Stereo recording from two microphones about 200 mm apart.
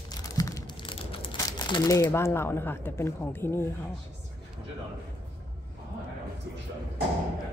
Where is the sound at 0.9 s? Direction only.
25° left (ahead or behind); by 3.7 s 10° left (ahead or behind).